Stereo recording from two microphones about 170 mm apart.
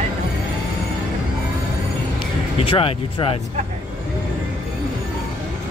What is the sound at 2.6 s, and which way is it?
Speech, 30° left (ahead or behind).